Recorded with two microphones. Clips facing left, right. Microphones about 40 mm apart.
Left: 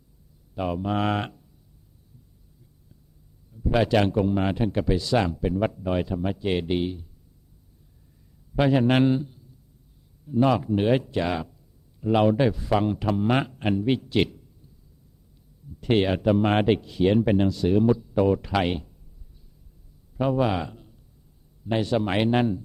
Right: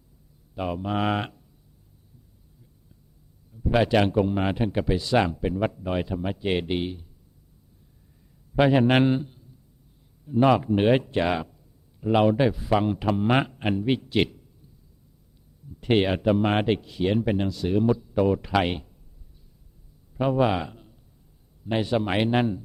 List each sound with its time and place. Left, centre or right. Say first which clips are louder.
0.5 s speech: left 1 dB; centre
3.5 s speech: even; centre
8.5 s speech: right 1 dB; centre
15.9 s speech: even; centre
20.1 s a man's voice: right 1 dB; centre